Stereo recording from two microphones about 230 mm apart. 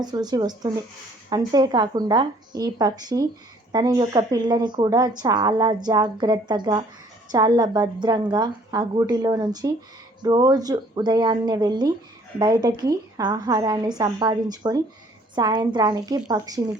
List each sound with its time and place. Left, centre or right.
0.0 s speech: centre